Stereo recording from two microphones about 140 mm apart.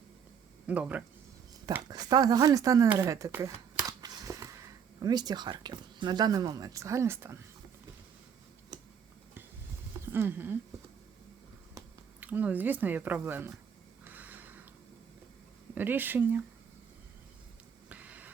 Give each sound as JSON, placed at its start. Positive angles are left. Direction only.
{"t": 0.7, "sound": "speech", "side_deg": -10}
{"t": 1.9, "sound": "speech", "side_deg": -30}
{"t": 3.0, "sound": "a sound", "side_deg": -25}
{"t": 5.0, "sound": "speech", "side_deg": -30}
{"t": 10.0, "sound": "speech", "side_deg": -15}
{"t": 12.2, "sound": "speech", "side_deg": -10}
{"t": 14.0, "sound": "a sound", "side_deg": -10}
{"t": 15.7, "sound": "speech", "side_deg": -15}
{"t": 17.8, "sound": "a sound", "side_deg": -10}